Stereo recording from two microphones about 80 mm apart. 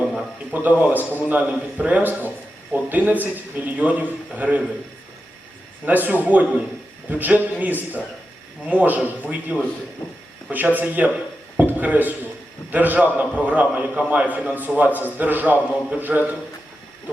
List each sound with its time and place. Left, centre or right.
0.5 s a man's voice: right
5.8 s a man's voice: right
11.5 s a sound: right
12.7 s a man's voice: right